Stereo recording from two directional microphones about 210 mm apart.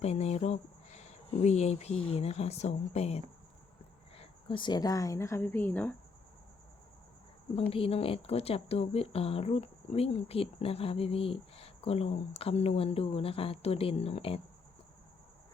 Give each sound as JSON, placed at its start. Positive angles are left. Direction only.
{"t": 0.0, "sound": "speech", "side_deg": 30}
{"t": 4.2, "sound": "speech", "side_deg": 25}
{"t": 7.5, "sound": "a woman's voice", "side_deg": 25}